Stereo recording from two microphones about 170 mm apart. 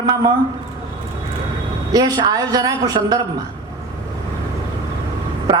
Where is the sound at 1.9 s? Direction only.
25° right (ahead or behind).